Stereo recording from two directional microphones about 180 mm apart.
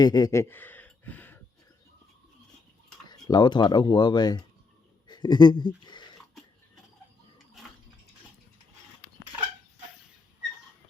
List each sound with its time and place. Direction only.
0.0 s speech: 20° left (ahead or behind)
3.1 s speech: 25° left (ahead or behind)
5.0 s a sound: 25° left (ahead or behind)